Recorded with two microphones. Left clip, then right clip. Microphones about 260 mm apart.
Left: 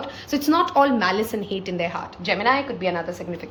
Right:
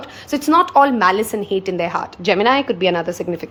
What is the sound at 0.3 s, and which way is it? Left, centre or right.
A woman's voice, centre.